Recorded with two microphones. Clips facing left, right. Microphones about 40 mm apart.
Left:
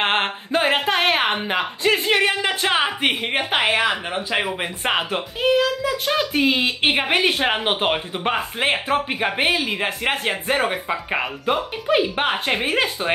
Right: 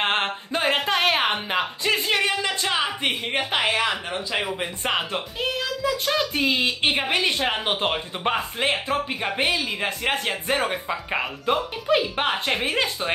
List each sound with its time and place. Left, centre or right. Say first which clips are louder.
0.0 s a sound: left 3 dB; centre
0.7 s a woman's voice: left 2 dB; centre
7.9 s speech: left 2 dB; centre
8.5 s a woman's voice: left 3 dB; left